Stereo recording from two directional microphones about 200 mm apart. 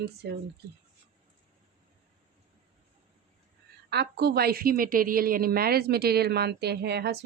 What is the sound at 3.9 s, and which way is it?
A woman's voice, 55° right (ahead or behind).